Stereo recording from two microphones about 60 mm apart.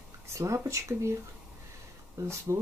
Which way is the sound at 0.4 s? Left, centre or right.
Right.